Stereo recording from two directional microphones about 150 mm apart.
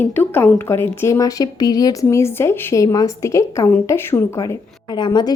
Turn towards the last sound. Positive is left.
turn(degrees=30)  # may be behind; listen again after turning